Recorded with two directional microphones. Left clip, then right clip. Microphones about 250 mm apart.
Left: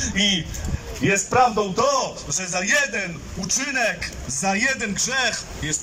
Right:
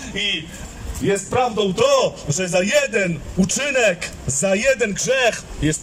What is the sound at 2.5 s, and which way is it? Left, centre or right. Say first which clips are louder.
A man's voice: right 4 dB; right.